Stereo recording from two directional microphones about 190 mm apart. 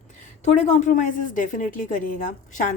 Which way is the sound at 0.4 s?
40° left (ahead or behind).